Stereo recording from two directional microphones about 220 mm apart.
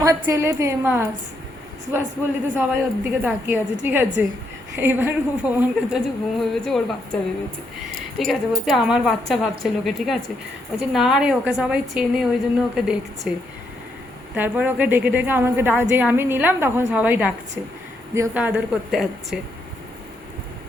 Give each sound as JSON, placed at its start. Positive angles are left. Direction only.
{"t": 0.0, "sound": "a woman's voice", "side_deg": -15}
{"t": 2.6, "sound": "a woman's voice", "side_deg": -10}
{"t": 8.2, "sound": "a woman's voice", "side_deg": 0}
{"t": 14.3, "sound": "a woman's voice", "side_deg": -10}